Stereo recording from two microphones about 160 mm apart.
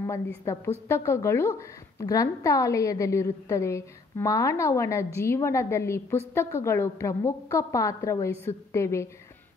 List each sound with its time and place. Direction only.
0.5 s a woman's voice: 15° left (ahead or behind)